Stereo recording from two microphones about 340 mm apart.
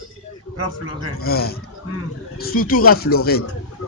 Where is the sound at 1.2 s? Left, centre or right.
Left.